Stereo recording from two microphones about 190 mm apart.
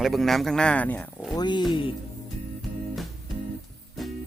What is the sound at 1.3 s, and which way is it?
Speech, 25° left (ahead or behind).